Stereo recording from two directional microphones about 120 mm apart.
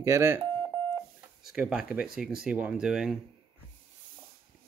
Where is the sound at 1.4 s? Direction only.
5° right (ahead or behind).